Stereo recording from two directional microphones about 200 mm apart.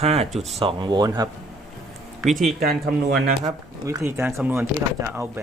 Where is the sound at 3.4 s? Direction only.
15° right (ahead or behind).